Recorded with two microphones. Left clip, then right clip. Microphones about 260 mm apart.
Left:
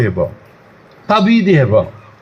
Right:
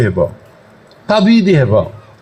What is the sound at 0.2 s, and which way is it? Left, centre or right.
A man's voice, right.